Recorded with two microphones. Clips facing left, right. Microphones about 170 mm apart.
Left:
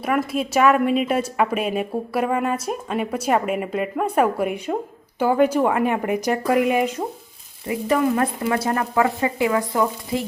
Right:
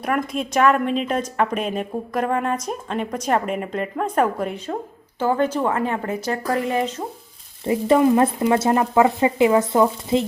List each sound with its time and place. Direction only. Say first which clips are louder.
0.0 s a woman's voice: left 1 dB; 5° left (ahead or behind)
7.7 s speech: right 4 dB; 25° right (ahead or behind)